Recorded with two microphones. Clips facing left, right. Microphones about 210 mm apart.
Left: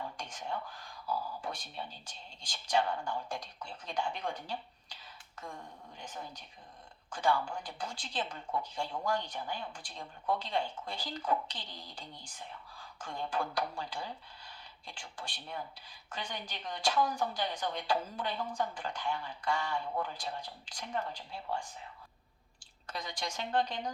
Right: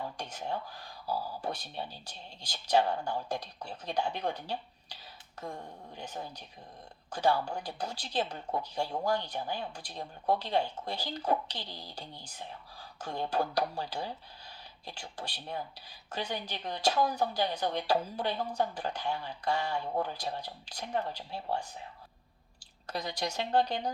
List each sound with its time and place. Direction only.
0.2 s a woman's voice: 40° right (ahead or behind)
22.9 s a woman's voice: 40° right (ahead or behind)